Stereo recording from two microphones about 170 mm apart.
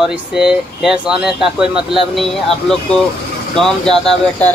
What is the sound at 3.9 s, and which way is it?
Speech, centre (ahead or behind).